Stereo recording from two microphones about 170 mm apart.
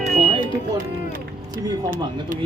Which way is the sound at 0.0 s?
35° right (ahead or behind).